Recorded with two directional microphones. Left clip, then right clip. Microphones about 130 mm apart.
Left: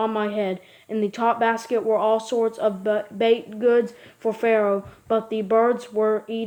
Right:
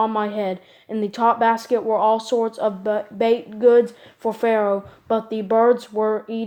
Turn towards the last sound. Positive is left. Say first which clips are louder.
# even
turn(degrees=-40)  # may be behind; listen again after turning